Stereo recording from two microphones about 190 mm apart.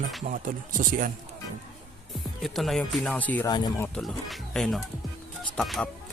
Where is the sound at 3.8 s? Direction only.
5° left (ahead or behind).